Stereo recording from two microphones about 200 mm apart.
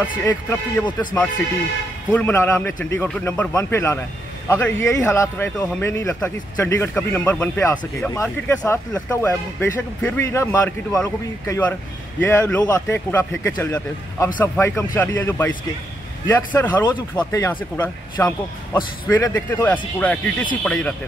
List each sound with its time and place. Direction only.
0.0 s speech: 15° left (ahead or behind)
2.1 s speech: 10° left (ahead or behind)